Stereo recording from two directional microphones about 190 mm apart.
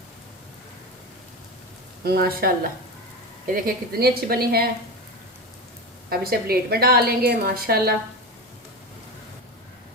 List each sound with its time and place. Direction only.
2.0 s a woman's voice: 55° right (ahead or behind)
6.1 s a woman's voice: 55° right (ahead or behind)